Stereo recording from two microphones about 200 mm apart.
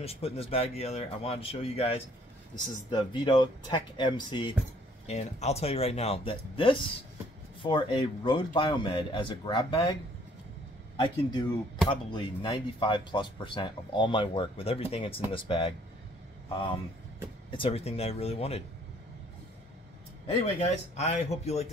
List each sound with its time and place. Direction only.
0.0 s speech: 30° left (ahead or behind)
11.0 s speech: 20° left (ahead or behind)
17.5 s speech: 30° left (ahead or behind)
20.3 s speech: 35° left (ahead or behind)